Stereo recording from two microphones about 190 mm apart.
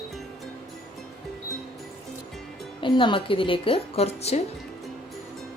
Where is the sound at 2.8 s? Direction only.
25° left (ahead or behind).